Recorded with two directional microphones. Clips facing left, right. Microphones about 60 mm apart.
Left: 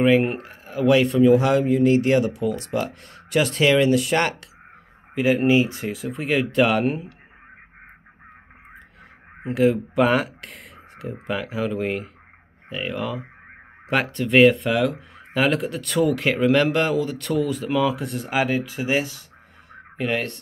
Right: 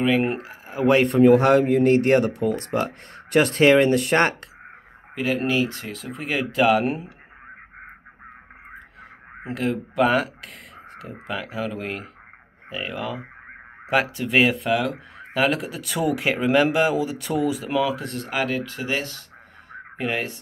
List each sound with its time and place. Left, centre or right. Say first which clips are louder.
0.0 s speech: left 3 dB; centre
0.8 s speech: right 1 dB; right
5.1 s speech: left 5 dB; centre
6.0 s speech: left 3 dB; centre
9.4 s speech: left 6 dB; centre
19.7 s a sound: left 2 dB; centre